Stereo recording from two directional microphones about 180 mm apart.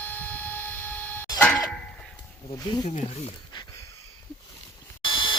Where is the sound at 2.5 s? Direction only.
20° left (ahead or behind).